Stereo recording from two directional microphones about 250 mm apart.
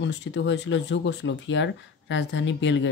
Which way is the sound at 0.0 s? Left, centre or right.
Left.